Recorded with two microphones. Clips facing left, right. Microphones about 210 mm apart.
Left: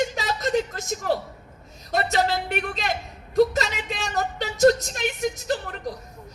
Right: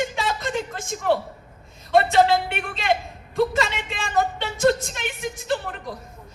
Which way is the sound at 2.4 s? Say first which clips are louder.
Right 3 dB; 40° left (ahead or behind).